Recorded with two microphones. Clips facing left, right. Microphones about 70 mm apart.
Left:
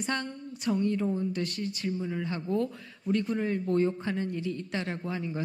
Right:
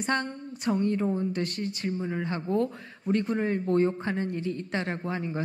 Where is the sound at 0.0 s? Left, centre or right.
Right.